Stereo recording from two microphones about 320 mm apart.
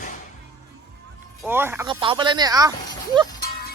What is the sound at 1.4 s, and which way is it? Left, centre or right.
Speech, centre.